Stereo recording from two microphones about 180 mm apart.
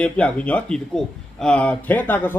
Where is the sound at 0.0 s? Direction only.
5° left (ahead or behind).